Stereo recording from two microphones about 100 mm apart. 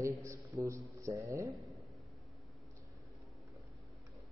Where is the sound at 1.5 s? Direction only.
Centre (ahead or behind).